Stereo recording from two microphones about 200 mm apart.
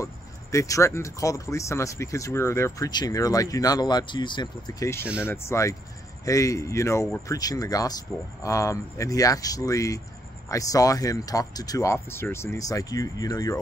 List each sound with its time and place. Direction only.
0.0 s speech: 15° left (ahead or behind)